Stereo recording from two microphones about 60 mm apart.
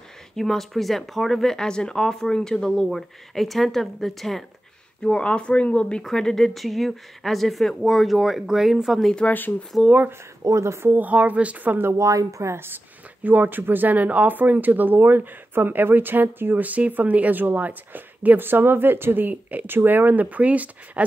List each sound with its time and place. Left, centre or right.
0.4 s speech: centre
5.0 s speech: centre
6.0 s speech: centre
9.3 s speech: left
10.4 s speech: right
10.9 s a woman's voice: right
12.0 s speech: right
12.5 s speech: right